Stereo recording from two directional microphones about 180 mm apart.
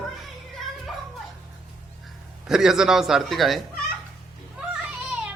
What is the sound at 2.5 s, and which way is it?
A man's voice, centre (ahead or behind).